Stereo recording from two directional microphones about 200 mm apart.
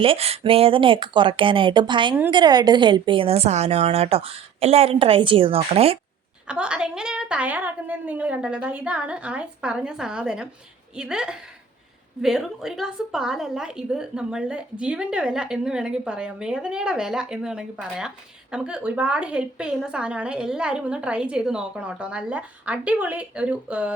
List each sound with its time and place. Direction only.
0.0 s a woman's voice: 30° right (ahead or behind)
6.5 s a woman's voice: 5° right (ahead or behind)